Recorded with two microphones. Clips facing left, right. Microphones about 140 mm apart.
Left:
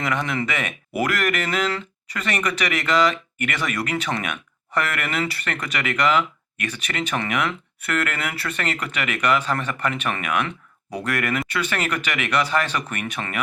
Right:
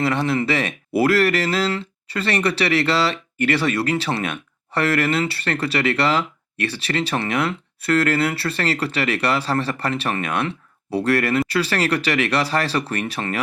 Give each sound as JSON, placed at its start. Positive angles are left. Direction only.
{"t": 0.0, "sound": "speech", "side_deg": -30}